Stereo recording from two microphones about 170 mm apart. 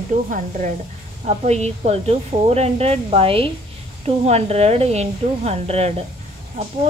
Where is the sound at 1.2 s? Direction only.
40° right (ahead or behind).